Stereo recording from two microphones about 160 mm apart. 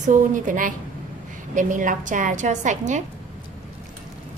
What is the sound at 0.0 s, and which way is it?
A woman's voice, 55° right (ahead or behind).